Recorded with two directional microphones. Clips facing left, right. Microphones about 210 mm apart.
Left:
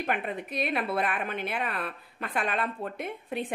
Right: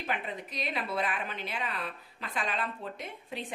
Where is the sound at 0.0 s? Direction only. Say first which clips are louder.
Left 5 dB; 55° left (ahead or behind).